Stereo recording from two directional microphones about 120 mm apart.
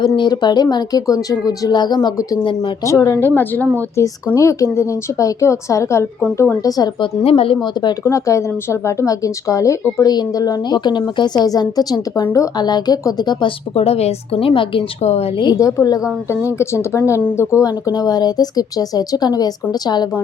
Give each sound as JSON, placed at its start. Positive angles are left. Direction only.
{"t": 0.2, "sound": "a woman's voice", "side_deg": 35}
{"t": 2.8, "sound": "speech", "side_deg": 25}
{"t": 4.4, "sound": "speech", "side_deg": 25}
{"t": 7.3, "sound": "a woman's voice", "side_deg": 50}
{"t": 8.0, "sound": "speech", "side_deg": 25}
{"t": 13.7, "sound": "a woman's voice", "side_deg": 60}
{"t": 15.0, "sound": "a woman's voice", "side_deg": 60}
{"t": 15.4, "sound": "speech", "side_deg": 35}